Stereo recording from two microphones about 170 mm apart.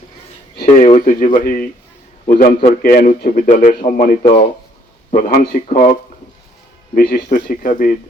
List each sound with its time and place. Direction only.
0.6 s a sound: 40° left (ahead or behind)
1.0 s a man's voice: 55° left (ahead or behind)
5.6 s a man's voice: 45° left (ahead or behind)
6.9 s a man's voice: 60° left (ahead or behind)